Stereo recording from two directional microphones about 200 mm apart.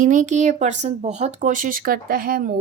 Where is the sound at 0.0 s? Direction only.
40° right (ahead or behind).